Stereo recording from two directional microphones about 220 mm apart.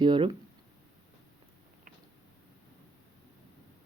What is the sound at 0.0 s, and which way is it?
Speech, 20° right (ahead or behind).